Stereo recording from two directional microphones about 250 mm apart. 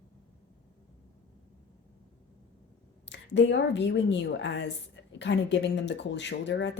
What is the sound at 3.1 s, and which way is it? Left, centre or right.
Speech, left.